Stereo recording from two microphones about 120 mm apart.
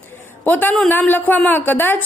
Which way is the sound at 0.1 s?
15° left (ahead or behind).